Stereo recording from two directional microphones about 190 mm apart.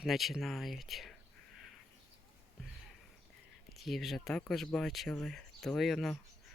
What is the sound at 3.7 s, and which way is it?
Speech, centre (ahead or behind).